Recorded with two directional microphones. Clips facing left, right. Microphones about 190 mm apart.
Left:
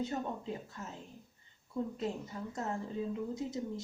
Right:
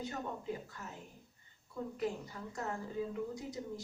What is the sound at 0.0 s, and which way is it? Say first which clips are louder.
Speech: left 4 dB; 25° left (ahead or behind).